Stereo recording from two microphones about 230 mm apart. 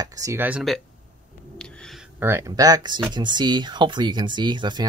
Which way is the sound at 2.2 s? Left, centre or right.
Centre.